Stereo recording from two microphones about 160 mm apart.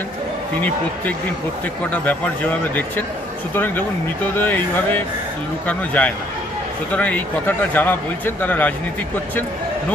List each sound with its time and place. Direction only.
1.9 s a man's voice: 10° left (ahead or behind)